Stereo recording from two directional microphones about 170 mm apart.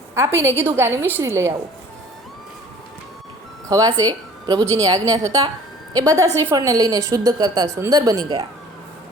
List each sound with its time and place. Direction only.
0.1 s a woman's voice: 15° right (ahead or behind)
3.7 s a woman's voice: 20° right (ahead or behind)